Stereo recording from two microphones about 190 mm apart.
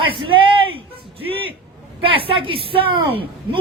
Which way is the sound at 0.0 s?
25° right (ahead or behind).